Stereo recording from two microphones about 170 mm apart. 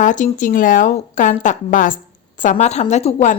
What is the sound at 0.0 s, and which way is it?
A woman's voice, 50° left (ahead or behind).